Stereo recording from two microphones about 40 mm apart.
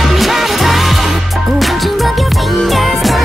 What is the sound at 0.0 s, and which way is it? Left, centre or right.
Music, centre.